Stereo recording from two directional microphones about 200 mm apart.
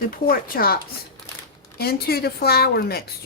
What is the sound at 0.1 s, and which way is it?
Speech, 45° left (ahead or behind).